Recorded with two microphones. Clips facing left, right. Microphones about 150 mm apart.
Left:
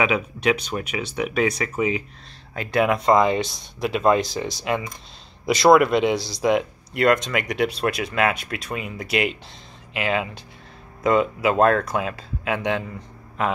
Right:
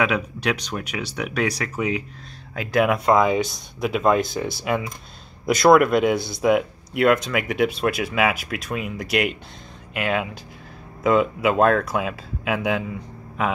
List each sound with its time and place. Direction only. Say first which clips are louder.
0.0 s speech: left 1 dB; centre (ahead or behind)
6.1 s speech: right 1 dB; 55° right (ahead or behind)
6.4 s speech: right 1 dB; 5° right (ahead or behind)